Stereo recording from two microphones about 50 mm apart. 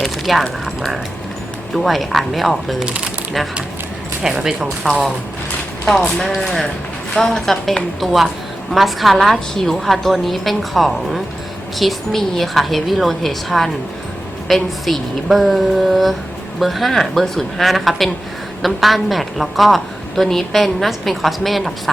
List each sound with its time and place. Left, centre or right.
0.0 s speech: centre
1.7 s a woman's voice: centre
4.2 s a woman's voice: centre
6.1 s speech: centre
7.4 s a woman's voice: centre
8.0 s a woman's voice: centre